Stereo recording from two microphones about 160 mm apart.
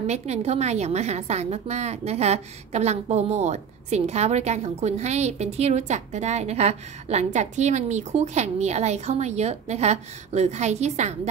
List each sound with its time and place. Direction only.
0.0 s a woman's voice: 45° right (ahead or behind)